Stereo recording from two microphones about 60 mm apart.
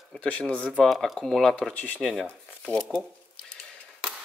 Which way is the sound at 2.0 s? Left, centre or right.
Centre.